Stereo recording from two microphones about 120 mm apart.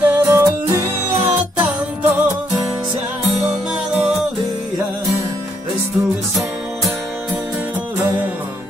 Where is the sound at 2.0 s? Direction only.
15° right (ahead or behind).